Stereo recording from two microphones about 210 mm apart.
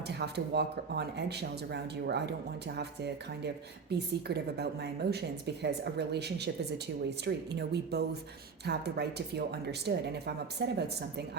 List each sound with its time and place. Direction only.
0.1 s speech: 50° right (ahead or behind)